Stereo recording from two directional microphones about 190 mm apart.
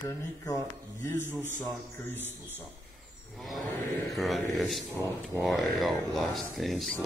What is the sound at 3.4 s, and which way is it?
Speech, centre (ahead or behind).